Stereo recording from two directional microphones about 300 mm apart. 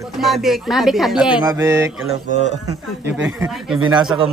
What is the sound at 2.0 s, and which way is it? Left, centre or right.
Mantra, right.